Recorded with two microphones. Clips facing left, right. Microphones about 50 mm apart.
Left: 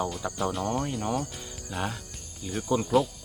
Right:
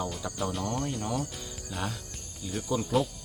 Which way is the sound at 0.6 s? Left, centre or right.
Centre.